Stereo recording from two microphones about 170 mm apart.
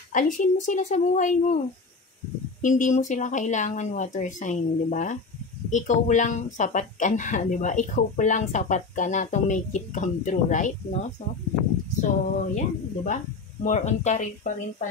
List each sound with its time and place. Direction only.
0.1 s speech: 50° left (ahead or behind)
2.6 s speech: 45° left (ahead or behind)